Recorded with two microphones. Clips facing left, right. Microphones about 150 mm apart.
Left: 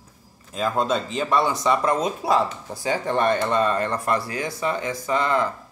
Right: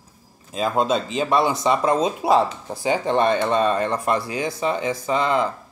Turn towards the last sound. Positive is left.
turn(degrees=-20)  # may be behind; listen again after turning